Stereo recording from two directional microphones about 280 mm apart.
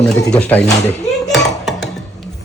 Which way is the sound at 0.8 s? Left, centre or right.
Centre.